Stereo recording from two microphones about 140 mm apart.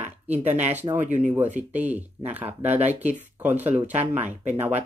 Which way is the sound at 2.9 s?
55° right (ahead or behind).